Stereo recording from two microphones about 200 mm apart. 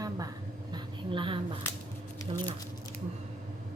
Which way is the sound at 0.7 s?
25° right (ahead or behind).